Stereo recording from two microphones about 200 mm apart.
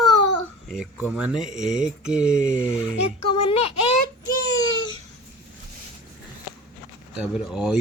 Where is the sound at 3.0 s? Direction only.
30° left (ahead or behind).